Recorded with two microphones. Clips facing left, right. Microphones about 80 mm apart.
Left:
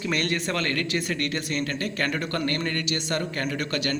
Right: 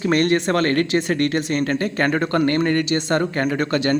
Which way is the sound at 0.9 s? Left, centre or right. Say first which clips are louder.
Right 8 dB; right.